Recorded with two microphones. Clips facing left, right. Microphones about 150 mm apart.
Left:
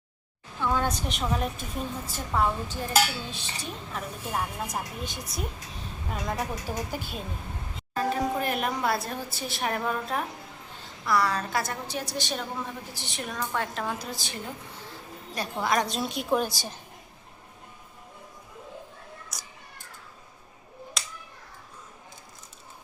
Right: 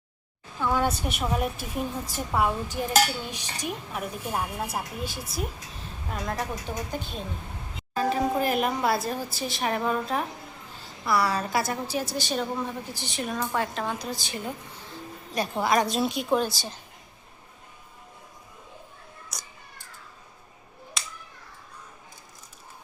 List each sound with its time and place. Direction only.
0.7 s a woman's voice: 10° right (ahead or behind)
15.4 s speech: 10° right (ahead or behind)
16.4 s a woman's voice: 15° left (ahead or behind)
19.3 s a sound: centre (ahead or behind)